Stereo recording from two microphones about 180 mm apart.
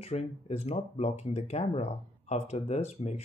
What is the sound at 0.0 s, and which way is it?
Speech, 35° left (ahead or behind).